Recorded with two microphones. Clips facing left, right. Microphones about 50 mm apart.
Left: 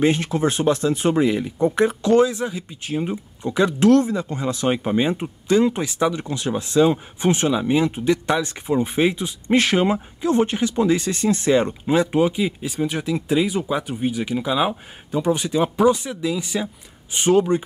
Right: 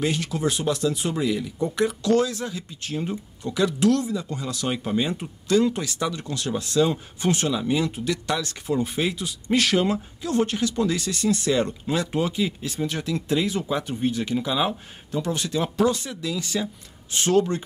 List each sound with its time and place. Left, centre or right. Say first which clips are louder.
0.0 s speech: left 6 dB; left; by 17.6 s centre